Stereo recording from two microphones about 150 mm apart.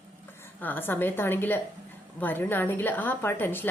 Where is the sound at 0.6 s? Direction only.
15° left (ahead or behind).